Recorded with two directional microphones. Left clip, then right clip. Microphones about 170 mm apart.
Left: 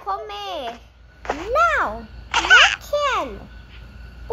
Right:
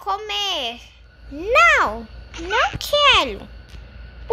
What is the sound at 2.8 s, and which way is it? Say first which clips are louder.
Speech: right 6 dB; 15° right (ahead or behind).